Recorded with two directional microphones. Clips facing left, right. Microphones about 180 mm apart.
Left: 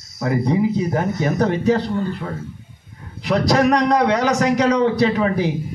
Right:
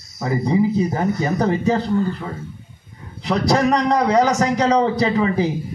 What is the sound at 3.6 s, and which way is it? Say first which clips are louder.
Speech: left 2 dB; 70° left (ahead or behind).